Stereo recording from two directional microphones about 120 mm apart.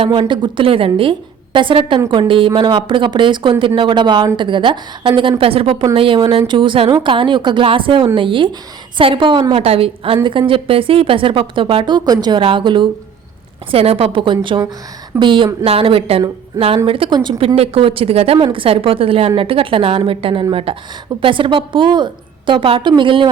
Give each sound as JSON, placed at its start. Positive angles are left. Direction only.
{"t": 0.0, "sound": "a woman's voice", "side_deg": -40}
{"t": 12.4, "sound": "speech", "side_deg": -45}
{"t": 13.7, "sound": "speech", "side_deg": -55}